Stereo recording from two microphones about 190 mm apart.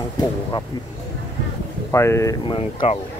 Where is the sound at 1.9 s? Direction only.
15° left (ahead or behind).